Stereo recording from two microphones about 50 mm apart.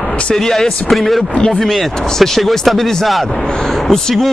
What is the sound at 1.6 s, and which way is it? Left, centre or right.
Speech, centre.